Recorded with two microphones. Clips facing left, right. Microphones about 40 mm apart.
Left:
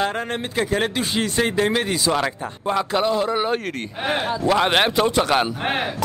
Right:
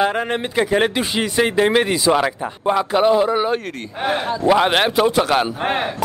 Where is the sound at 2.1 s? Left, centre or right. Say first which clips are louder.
Right 4 dB; centre.